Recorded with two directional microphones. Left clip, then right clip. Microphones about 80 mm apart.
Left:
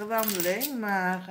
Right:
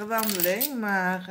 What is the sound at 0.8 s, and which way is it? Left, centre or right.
Speech, right.